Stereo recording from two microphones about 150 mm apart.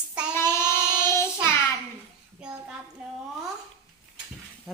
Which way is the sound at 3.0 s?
5° right (ahead or behind).